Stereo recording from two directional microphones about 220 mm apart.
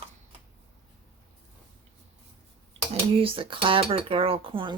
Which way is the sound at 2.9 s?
25° right (ahead or behind).